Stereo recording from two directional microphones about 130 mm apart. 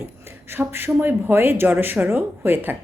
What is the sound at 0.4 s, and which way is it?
A woman's voice, 20° right (ahead or behind).